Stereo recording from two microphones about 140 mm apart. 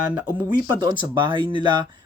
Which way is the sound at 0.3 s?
30° right (ahead or behind).